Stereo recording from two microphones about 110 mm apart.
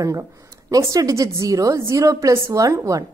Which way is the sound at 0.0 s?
30° right (ahead or behind).